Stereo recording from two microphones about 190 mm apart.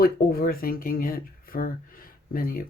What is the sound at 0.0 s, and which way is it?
Speech, 50° left (ahead or behind).